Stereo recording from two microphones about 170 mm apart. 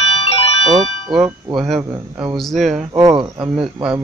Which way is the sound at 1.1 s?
Centre (ahead or behind).